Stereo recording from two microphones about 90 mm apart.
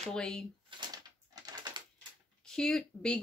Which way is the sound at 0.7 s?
55° right (ahead or behind).